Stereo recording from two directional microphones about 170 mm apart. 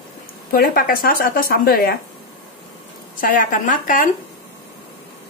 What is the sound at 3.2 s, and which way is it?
Speech, 55° left (ahead or behind).